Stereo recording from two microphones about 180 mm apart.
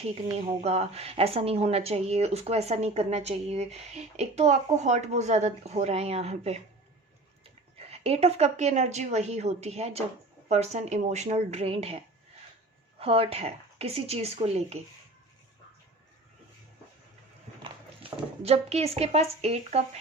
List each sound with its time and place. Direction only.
0.6 s speech: 35° right (ahead or behind)
7.8 s speech: 35° right (ahead or behind)
13.0 s speech: 35° right (ahead or behind)
17.6 s speech: 30° right (ahead or behind)